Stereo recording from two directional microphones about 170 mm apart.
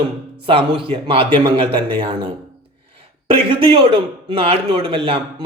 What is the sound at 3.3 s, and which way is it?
A man's voice, 30° right (ahead or behind).